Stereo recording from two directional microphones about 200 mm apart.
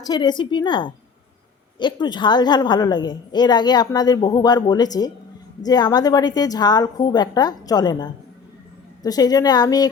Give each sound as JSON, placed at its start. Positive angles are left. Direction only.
{"t": 0.0, "sound": "a woman's voice", "side_deg": 20}